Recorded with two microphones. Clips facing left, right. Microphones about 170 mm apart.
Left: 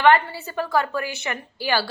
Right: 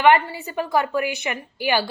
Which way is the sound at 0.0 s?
15° right (ahead or behind).